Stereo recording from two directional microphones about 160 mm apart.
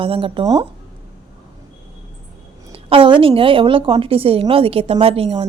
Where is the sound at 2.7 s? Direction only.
35° right (ahead or behind).